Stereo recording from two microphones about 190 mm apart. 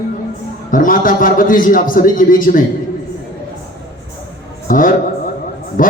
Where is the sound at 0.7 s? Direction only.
45° left (ahead or behind).